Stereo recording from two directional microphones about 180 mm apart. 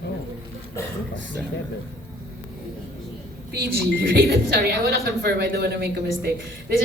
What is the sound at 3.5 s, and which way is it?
A woman's voice, 60° right (ahead or behind).